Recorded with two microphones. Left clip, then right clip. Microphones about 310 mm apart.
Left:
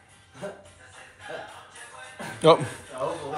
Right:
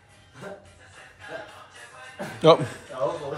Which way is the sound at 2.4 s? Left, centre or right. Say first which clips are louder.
Right 1 dB; centre.